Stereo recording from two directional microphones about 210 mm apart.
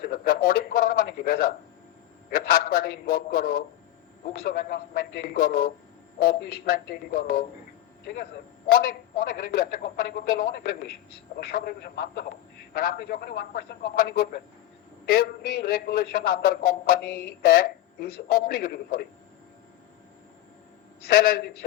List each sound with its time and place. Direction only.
0.0 s a sound: 45° left (ahead or behind)
2.3 s a man's voice: 45° left (ahead or behind)
21.0 s a man's voice: 45° left (ahead or behind)